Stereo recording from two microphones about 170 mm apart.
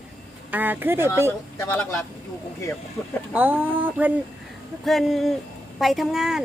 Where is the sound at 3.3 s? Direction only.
10° right (ahead or behind).